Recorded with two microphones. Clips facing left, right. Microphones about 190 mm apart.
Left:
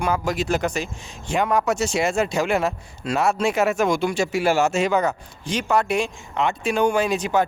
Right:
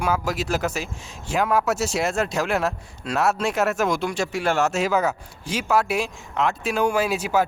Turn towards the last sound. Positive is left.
turn(degrees=-5)  # may be behind; listen again after turning